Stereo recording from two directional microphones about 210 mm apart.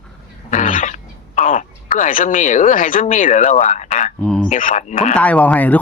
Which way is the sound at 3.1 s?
40° left (ahead or behind).